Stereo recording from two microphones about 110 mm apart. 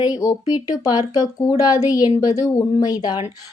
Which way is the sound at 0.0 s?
35° left (ahead or behind).